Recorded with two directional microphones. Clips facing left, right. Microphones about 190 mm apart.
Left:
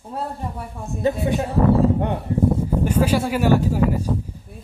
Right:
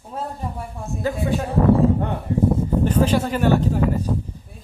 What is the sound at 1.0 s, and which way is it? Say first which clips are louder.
Speech: left 2 dB; 20° left (ahead or behind).